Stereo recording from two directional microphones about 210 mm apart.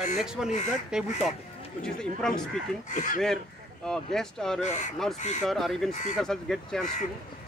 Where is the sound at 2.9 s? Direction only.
40° left (ahead or behind).